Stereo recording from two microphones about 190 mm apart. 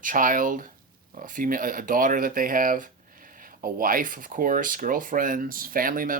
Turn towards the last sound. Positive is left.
turn(degrees=-45)  # may be behind; listen again after turning